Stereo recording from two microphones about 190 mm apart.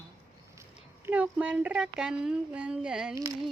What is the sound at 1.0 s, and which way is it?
A woman's voice, 10° right (ahead or behind).